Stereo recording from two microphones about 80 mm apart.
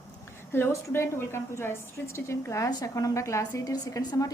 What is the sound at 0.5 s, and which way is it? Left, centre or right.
A woman's voice, left.